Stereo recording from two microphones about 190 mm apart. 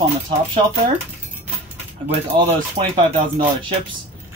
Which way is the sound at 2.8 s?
40° right (ahead or behind).